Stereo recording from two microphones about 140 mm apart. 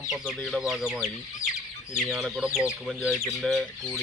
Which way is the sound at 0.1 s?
5° left (ahead or behind).